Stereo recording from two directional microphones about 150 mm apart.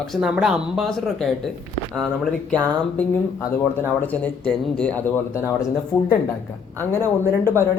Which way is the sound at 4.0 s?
10° left (ahead or behind).